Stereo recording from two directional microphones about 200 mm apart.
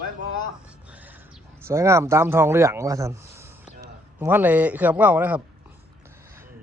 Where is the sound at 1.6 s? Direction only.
15° right (ahead or behind).